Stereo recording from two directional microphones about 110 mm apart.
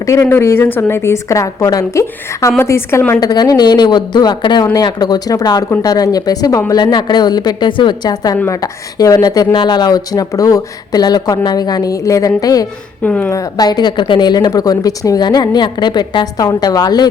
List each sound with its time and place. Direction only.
0.0 s a woman's voice: 25° left (ahead or behind)
3.2 s speech: 35° left (ahead or behind)
13.0 s speech: 15° left (ahead or behind)
13.3 s speech: 35° left (ahead or behind)